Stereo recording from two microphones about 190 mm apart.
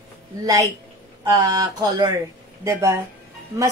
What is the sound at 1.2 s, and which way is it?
Speech, 20° right (ahead or behind).